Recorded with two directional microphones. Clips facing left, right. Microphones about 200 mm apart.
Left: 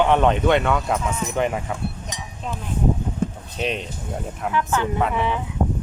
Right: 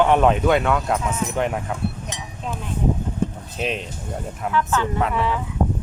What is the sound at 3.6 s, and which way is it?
Speech, centre (ahead or behind).